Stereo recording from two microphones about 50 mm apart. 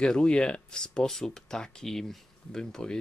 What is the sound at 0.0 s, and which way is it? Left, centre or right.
Speech, centre.